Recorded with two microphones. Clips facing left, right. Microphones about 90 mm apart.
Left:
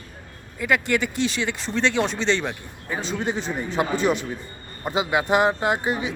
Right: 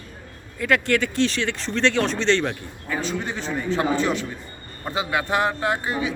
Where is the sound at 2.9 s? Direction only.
20° left (ahead or behind).